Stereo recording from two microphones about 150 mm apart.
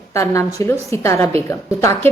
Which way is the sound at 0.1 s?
20° left (ahead or behind).